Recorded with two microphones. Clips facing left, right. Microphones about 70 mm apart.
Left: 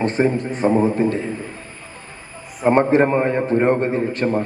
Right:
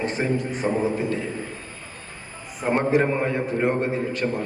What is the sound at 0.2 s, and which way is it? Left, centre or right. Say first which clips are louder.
A man's voice: left 7 dB; left.